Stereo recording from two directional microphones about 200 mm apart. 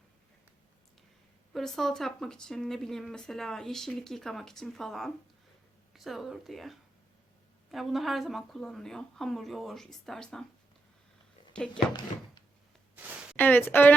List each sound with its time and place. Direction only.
1.5 s speech: centre (ahead or behind)
11.5 s speech: 5° left (ahead or behind)
13.3 s a woman's voice: 10° left (ahead or behind)